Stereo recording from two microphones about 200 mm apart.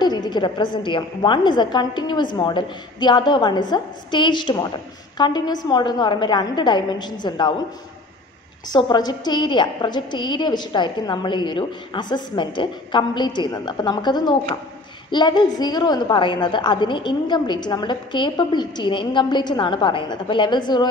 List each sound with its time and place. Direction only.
0.0 s a woman's voice: 20° left (ahead or behind)
8.6 s a woman's voice: 20° left (ahead or behind)